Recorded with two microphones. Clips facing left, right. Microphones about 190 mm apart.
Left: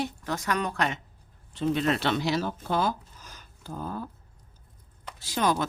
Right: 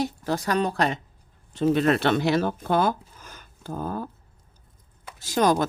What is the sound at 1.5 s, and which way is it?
Speech, 45° right (ahead or behind).